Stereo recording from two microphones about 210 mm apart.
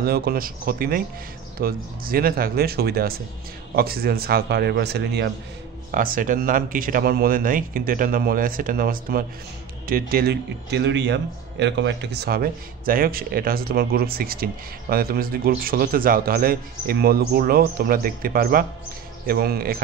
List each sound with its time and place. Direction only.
0.0 s a man's voice: 45° right (ahead or behind)
5.9 s a man's voice: 40° right (ahead or behind)